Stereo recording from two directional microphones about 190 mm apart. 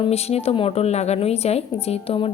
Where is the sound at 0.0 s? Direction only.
35° left (ahead or behind).